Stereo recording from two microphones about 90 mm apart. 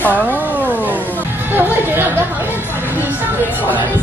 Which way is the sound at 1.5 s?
20° right (ahead or behind).